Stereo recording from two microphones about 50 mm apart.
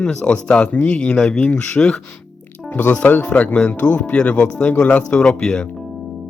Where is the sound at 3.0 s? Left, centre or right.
Left; by 5.7 s centre.